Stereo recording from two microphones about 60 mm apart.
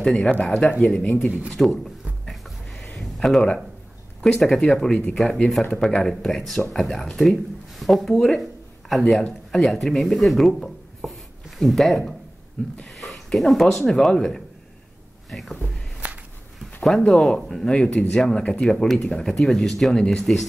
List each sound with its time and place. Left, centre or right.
0.0 s speech: centre
1.5 s speech: centre
2.2 s a sound: centre
3.2 s speech: centre
8.4 s a sound: centre
9.5 s speech: centre
16.0 s walk: right
16.8 s speech: centre
17.6 s speech: centre